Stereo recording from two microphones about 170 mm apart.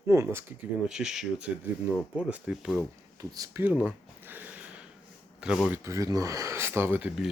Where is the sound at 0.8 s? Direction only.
5° right (ahead or behind).